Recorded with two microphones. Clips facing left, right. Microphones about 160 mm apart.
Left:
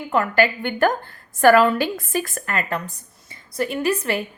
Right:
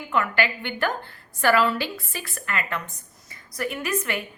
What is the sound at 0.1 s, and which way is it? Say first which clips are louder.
A woman's voice: left 5 dB; 40° left (ahead or behind).